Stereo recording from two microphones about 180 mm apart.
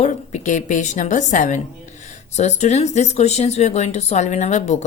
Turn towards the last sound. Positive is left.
turn(degrees=40)  # may be behind; listen again after turning